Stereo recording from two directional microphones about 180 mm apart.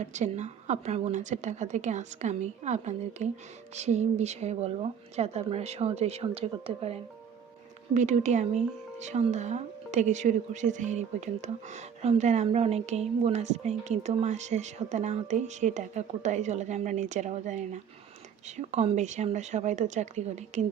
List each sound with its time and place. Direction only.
0.0 s speech: 40° right (ahead or behind)